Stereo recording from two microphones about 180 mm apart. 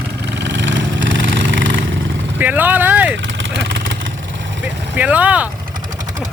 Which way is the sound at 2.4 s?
10° right (ahead or behind).